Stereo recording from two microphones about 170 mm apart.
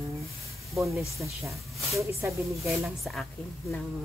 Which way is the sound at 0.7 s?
15° right (ahead or behind).